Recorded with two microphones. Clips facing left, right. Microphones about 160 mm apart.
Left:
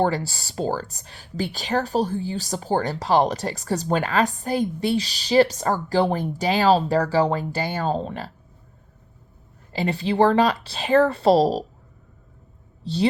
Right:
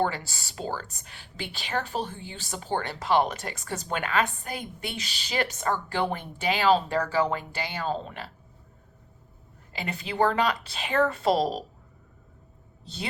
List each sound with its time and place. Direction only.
0.0 s speech: 35° left (ahead or behind)
9.7 s speech: 35° left (ahead or behind)
12.8 s speech: 35° left (ahead or behind)